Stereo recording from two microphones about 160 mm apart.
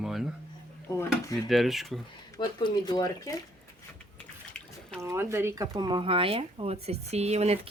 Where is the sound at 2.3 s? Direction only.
25° left (ahead or behind).